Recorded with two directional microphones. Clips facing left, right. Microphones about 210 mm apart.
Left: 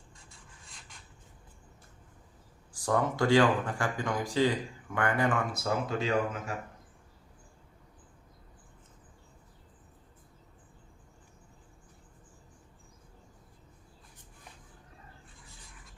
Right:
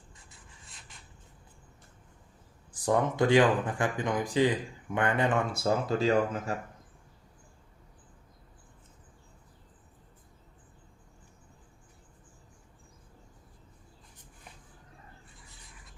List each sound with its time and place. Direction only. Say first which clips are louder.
0.3 s rub: even; 5° right (ahead or behind)
2.8 s speech: right 2 dB; 20° right (ahead or behind); by 6.4 s 35° right (ahead or behind)